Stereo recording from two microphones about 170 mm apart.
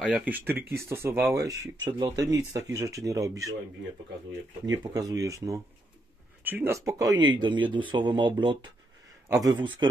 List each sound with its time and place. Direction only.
0.0 s speech: 5° right (ahead or behind)
4.6 s speech: 20° right (ahead or behind)